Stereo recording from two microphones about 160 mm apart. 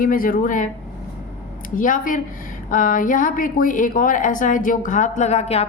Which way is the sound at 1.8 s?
55° left (ahead or behind).